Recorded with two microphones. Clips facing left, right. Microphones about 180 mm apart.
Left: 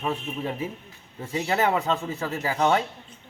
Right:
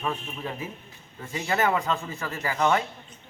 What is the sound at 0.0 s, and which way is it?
Speech, 25° left (ahead or behind).